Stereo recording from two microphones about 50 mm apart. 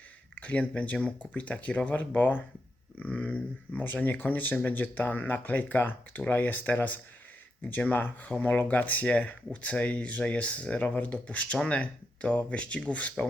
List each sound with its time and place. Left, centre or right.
0.3 s speech: left